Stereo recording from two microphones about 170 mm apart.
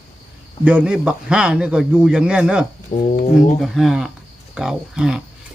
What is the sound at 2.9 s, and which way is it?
Speech, 40° left (ahead or behind).